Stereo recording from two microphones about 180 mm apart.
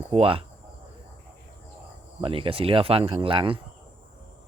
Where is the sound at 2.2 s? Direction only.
30° right (ahead or behind).